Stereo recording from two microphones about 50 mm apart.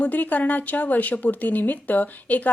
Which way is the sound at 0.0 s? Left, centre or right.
Left.